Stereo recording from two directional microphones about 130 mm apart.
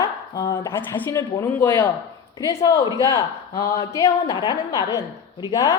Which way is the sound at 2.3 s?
25° left (ahead or behind).